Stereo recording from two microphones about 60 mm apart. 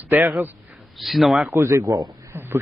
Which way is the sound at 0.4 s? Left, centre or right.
Right.